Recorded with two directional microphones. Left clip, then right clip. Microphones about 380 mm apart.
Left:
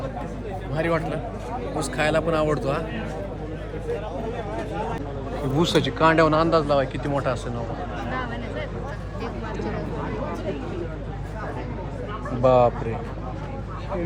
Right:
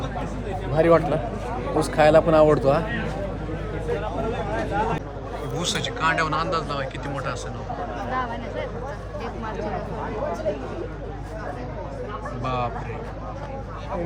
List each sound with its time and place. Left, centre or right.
0.8 s a man's voice: centre
5.5 s a man's voice: centre
8.1 s a sound: centre
12.4 s a man's voice: centre